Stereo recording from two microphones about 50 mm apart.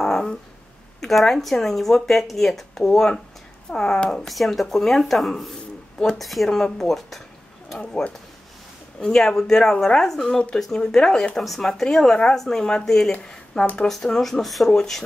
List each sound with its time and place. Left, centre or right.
0.0 s a sound: centre
1.0 s speech: centre
7.8 s speech: left
9.0 s speech: centre